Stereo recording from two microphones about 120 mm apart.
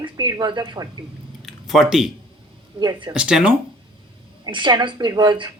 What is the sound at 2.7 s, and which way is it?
Speech, 35° right (ahead or behind).